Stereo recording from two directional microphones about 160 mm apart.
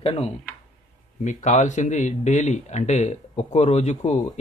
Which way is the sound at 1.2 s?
50° left (ahead or behind).